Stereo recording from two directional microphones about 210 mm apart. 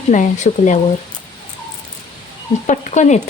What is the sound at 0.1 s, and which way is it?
Speech, 35° left (ahead or behind).